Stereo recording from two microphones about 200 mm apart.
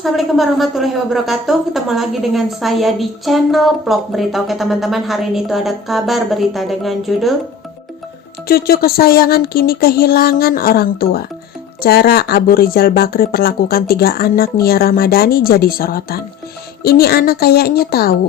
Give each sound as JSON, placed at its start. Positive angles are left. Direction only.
{"t": 0.0, "sound": "a woman's voice", "side_deg": 0}
{"t": 8.4, "sound": "speech", "side_deg": 50}